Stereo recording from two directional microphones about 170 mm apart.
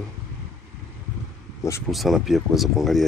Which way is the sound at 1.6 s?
20° left (ahead or behind).